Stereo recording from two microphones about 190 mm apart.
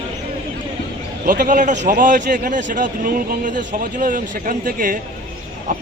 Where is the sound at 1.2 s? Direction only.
45° right (ahead or behind).